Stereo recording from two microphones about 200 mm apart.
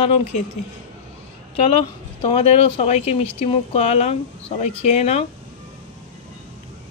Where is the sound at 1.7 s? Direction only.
25° left (ahead or behind).